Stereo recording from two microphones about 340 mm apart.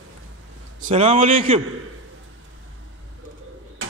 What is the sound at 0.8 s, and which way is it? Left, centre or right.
Speech, centre.